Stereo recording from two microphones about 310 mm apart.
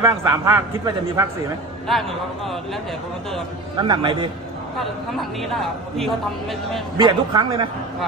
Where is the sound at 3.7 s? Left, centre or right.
Centre.